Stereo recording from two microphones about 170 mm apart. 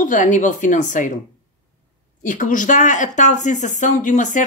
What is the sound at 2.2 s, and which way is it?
A woman's voice, 50° left (ahead or behind).